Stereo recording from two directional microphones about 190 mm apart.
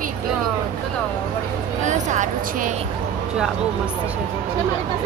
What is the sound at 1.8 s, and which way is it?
Speech, 40° right (ahead or behind).